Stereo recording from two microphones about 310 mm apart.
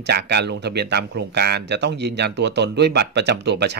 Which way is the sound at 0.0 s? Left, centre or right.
Right.